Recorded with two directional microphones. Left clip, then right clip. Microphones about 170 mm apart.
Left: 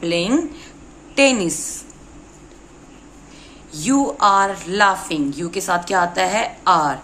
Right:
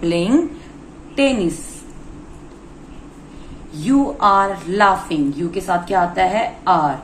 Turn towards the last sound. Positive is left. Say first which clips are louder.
# even
turn(degrees=40)  # may be behind; listen again after turning